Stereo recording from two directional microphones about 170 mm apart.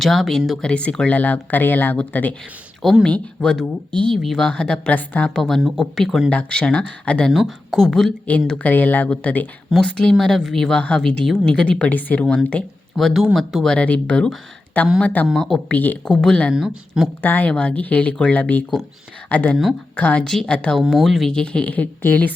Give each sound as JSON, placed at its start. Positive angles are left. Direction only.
{"t": 0.0, "sound": "speech", "side_deg": 0}
{"t": 17.2, "sound": "speech", "side_deg": 10}